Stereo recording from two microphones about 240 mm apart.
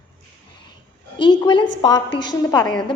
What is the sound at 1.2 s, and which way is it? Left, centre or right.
A woman's voice, centre.